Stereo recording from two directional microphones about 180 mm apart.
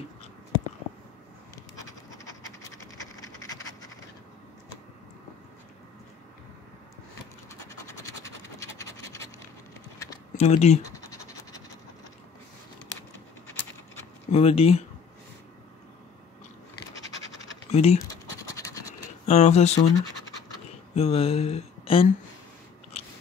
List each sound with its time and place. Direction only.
1.5 s a sound: 20° left (ahead or behind)
7.8 s scratch: 15° left (ahead or behind)
10.3 s speech: 35° left (ahead or behind)
10.8 s scratch: 20° left (ahead or behind)
14.3 s speech: 35° left (ahead or behind)
17.6 s a sound: 35° left (ahead or behind)
18.5 s scratch: 20° left (ahead or behind)
19.2 s speech: 40° left (ahead or behind)
19.8 s scratch: 20° left (ahead or behind)
20.9 s a sound: 35° left (ahead or behind)